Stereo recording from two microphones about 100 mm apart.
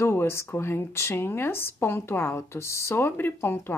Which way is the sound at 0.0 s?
25° left (ahead or behind).